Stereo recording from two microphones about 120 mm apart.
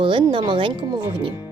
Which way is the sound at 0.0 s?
45° right (ahead or behind).